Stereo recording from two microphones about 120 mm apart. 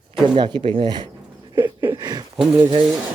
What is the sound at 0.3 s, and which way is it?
Speech, 40° right (ahead or behind).